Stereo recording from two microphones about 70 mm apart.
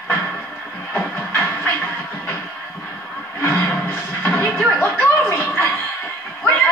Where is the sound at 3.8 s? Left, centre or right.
Left.